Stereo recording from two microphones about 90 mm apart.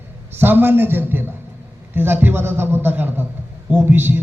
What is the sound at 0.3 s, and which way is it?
A man's voice, 25° right (ahead or behind).